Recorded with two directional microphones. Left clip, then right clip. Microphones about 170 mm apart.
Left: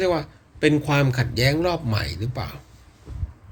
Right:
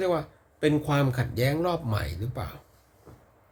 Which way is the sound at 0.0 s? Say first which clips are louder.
Left 4 dB; 20° right (ahead or behind).